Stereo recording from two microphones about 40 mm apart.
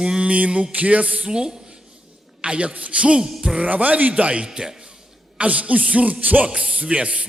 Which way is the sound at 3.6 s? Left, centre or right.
Right.